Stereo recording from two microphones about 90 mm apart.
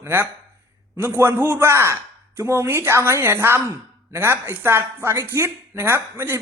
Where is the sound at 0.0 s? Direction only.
25° right (ahead or behind).